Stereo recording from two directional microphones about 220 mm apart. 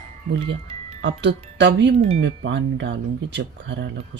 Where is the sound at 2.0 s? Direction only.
30° right (ahead or behind).